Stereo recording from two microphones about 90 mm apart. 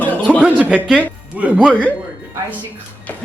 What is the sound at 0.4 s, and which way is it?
Speech, 10° right (ahead or behind).